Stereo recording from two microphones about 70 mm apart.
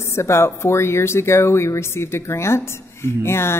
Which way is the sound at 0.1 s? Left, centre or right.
Left.